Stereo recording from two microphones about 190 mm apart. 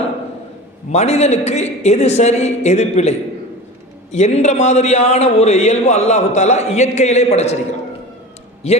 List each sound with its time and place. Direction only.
0.9 s a man's voice: 35° left (ahead or behind)